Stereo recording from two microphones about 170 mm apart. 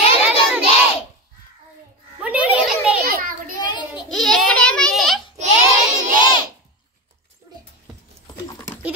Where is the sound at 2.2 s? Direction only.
10° right (ahead or behind).